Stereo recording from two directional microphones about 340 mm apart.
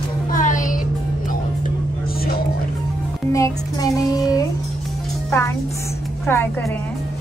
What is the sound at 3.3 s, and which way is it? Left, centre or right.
Music, centre.